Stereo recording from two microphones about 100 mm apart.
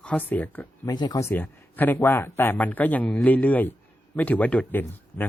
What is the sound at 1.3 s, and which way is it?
Speech, 20° left (ahead or behind).